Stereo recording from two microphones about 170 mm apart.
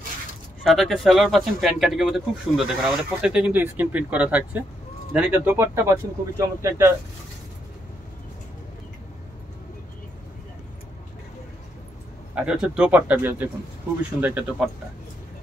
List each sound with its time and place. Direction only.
0.7 s speech: centre (ahead or behind); by 6.9 s 15° right (ahead or behind)
12.4 s speech: 5° right (ahead or behind)